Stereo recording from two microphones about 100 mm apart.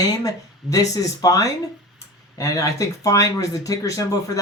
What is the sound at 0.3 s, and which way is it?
Speech, 35° left (ahead or behind).